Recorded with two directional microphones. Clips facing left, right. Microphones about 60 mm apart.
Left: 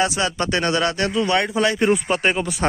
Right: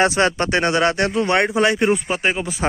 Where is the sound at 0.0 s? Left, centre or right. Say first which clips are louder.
Right 4 dB; right.